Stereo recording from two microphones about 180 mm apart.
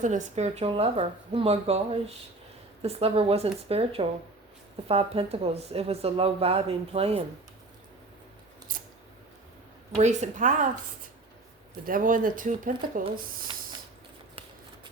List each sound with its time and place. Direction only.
0.0 s speech: 45° right (ahead or behind)
8.7 s scissors: 50° right (ahead or behind)
10.0 s speech: 40° right (ahead or behind)
11.9 s speech: 50° right (ahead or behind)